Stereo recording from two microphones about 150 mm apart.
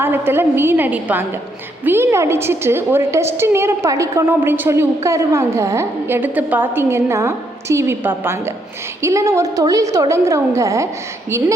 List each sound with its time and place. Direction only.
0.0 s a woman's voice: 15° right (ahead or behind)